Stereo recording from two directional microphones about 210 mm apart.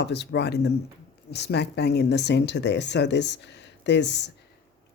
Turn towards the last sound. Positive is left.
turn(degrees=55)  # may be behind; listen again after turning